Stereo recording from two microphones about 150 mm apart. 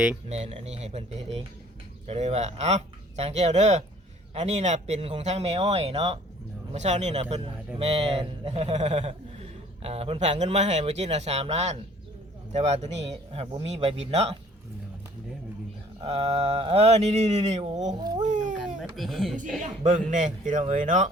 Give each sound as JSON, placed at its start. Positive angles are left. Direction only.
{"t": 0.3, "sound": "a man's voice", "side_deg": -45}
{"t": 16.0, "sound": "a man's voice", "side_deg": -40}
{"t": 17.6, "sound": "speech", "side_deg": -30}
{"t": 18.2, "sound": "a sound", "side_deg": -55}
{"t": 18.9, "sound": "speech", "side_deg": 0}
{"t": 19.6, "sound": "speech", "side_deg": -55}